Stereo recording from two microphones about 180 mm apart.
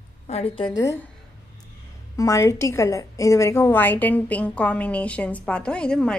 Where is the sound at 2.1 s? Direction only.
15° left (ahead or behind).